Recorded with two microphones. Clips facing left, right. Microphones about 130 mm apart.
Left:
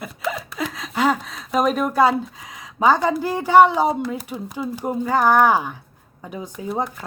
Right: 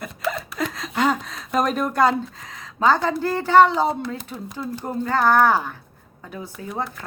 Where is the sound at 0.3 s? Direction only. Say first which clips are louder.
Even; 5° left (ahead or behind).